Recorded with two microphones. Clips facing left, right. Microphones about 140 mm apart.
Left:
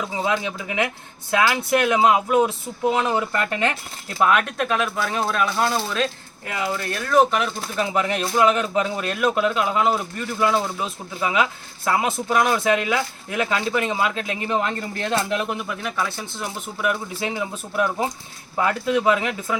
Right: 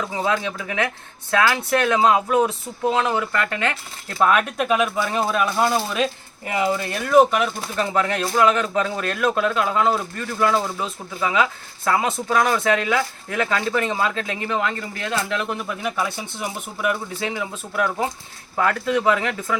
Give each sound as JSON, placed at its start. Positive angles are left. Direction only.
{"t": 0.0, "sound": "speech", "side_deg": 10}
{"t": 4.2, "sound": "speech", "side_deg": 5}
{"t": 4.4, "sound": "speech", "side_deg": -10}
{"t": 7.8, "sound": "speech", "side_deg": 10}
{"t": 14.4, "sound": "speech", "side_deg": 25}
{"t": 15.6, "sound": "speech", "side_deg": 0}
{"t": 16.8, "sound": "speech", "side_deg": 0}
{"t": 17.2, "sound": "speech", "side_deg": 20}